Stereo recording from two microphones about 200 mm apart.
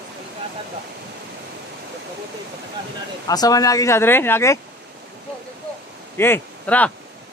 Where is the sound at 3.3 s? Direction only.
20° left (ahead or behind).